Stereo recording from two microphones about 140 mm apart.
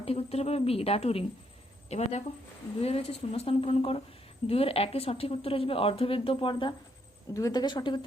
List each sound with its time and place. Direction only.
0.0 s a woman's voice: 45° left (ahead or behind)